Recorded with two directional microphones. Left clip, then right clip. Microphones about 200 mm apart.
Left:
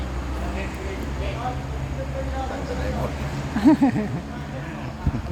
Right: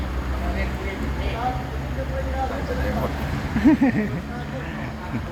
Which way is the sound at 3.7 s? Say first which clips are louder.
Left 1 dB; 15° left (ahead or behind).